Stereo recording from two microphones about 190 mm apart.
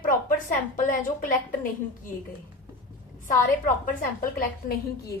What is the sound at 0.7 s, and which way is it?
Speech, 45° left (ahead or behind).